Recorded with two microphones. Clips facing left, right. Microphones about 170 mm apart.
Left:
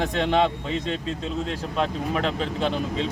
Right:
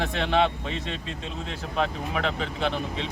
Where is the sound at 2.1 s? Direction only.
40° left (ahead or behind).